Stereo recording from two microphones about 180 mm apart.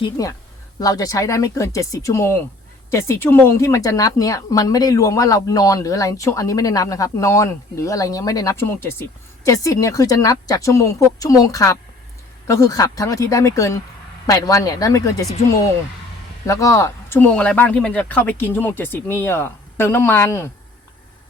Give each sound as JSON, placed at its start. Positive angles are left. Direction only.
{"t": 0.0, "sound": "speech", "side_deg": 20}